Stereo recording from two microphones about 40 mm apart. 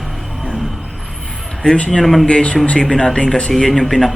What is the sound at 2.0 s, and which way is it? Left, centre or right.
Speech, centre.